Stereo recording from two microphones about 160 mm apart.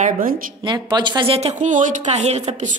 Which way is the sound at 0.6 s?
30° right (ahead or behind).